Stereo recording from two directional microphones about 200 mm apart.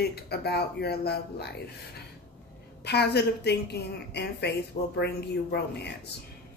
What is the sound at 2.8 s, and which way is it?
Speech, 55° left (ahead or behind).